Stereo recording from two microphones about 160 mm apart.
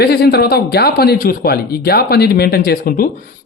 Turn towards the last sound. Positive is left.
turn(degrees=65)  # may be behind; listen again after turning